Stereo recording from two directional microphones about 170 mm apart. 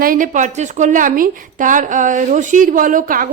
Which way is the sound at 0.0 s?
55° right (ahead or behind).